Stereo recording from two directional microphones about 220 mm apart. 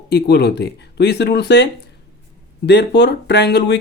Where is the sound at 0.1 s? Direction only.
45° left (ahead or behind).